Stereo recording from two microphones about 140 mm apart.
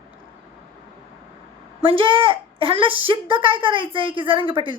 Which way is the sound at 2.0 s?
40° right (ahead or behind).